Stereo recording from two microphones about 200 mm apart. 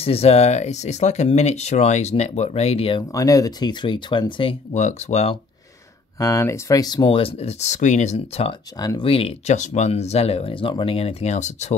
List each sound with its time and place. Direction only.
0.0 s speech: 30° left (ahead or behind)
6.1 s speech: 15° left (ahead or behind); by 11.7 s 35° left (ahead or behind)